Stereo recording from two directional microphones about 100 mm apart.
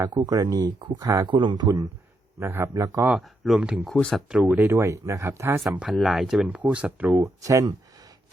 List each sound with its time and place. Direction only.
0.1 s speech: 45° right (ahead or behind)
1.3 s speech: 50° right (ahead or behind)
2.4 s speech: 25° right (ahead or behind)
3.2 s speech: centre (ahead or behind)
4.5 s speech: 25° right (ahead or behind)
5.7 s speech: 10° right (ahead or behind)
7.2 s speech: 35° right (ahead or behind)